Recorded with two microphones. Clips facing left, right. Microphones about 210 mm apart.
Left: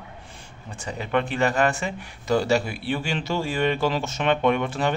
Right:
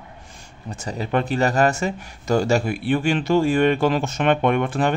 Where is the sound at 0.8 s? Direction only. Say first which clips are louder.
Right 2 dB; 40° right (ahead or behind).